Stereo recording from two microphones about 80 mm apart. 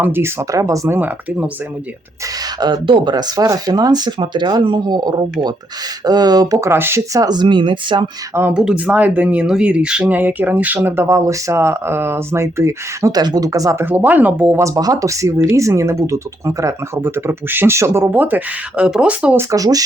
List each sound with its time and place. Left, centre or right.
0.0 s speech: right
0.9 s speech: right
2.6 s speech: right
4.9 s speech: right
6.6 s speech: right
7.1 s speech: right
8.5 s speech: centre; by 13.1 s right
13.1 s speech: right
13.7 s speech: right
14.6 s speech: right; by 19.4 s centre
19.4 s speech: right